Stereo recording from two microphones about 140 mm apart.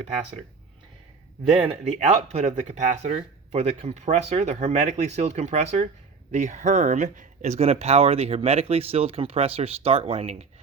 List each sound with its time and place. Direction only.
1.6 s speech: 50° right (ahead or behind)